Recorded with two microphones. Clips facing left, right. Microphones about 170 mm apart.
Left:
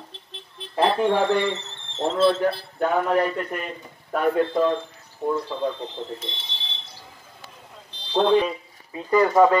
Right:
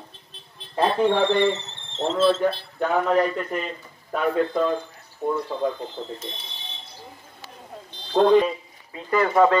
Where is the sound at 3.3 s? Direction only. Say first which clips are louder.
Right 1 dB; 55° left (ahead or behind).